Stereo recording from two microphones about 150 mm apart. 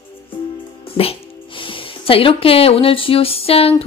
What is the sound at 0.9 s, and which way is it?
A woman's voice, 40° left (ahead or behind).